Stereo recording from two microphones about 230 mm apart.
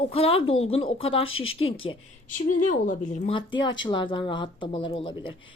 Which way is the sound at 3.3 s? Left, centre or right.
Centre.